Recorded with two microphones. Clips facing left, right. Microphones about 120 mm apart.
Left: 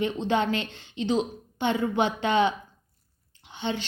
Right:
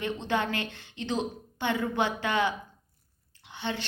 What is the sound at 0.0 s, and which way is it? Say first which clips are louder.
A woman's voice: left 4 dB; 20° left (ahead or behind).